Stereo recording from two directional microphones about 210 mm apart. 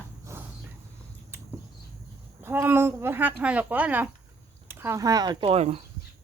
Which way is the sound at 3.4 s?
5° right (ahead or behind).